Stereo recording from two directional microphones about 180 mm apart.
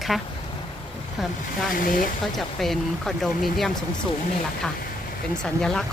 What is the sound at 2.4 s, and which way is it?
Speech, centre (ahead or behind).